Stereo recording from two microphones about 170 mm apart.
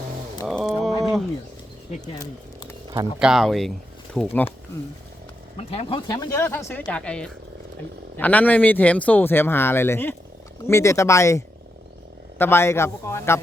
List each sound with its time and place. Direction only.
0.4 s a sound: centre (ahead or behind)
3.2 s speech: 5° right (ahead or behind)
5.5 s speech: 35° left (ahead or behind)
6.1 s speech: 15° left (ahead or behind)